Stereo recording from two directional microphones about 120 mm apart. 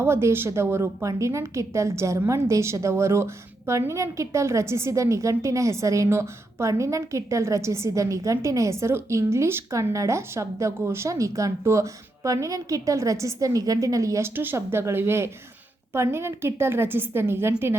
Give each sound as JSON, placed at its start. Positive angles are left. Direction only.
{"t": 0.0, "sound": "a woman's voice", "side_deg": -20}